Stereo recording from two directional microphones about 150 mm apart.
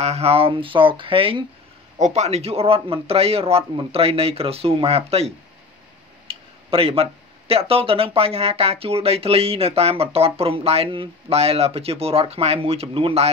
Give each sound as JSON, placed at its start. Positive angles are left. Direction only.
{"t": 0.0, "sound": "speech", "side_deg": -45}
{"t": 2.0, "sound": "speech", "side_deg": -50}